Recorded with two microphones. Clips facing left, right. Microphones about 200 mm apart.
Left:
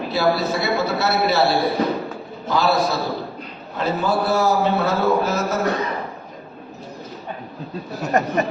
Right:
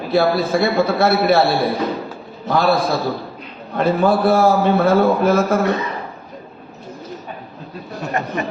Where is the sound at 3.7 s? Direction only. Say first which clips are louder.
Right 5 dB; 55° right (ahead or behind).